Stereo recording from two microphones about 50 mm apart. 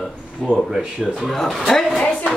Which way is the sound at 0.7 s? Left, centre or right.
Centre.